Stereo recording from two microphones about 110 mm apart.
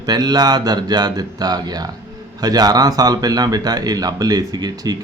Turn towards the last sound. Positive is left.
turn(degrees=-35)  # may be behind; listen again after turning